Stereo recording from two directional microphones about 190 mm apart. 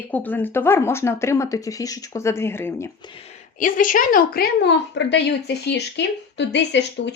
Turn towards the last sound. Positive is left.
turn(degrees=65)  # may be behind; listen again after turning